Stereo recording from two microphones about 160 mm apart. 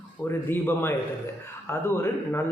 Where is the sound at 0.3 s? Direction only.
15° left (ahead or behind).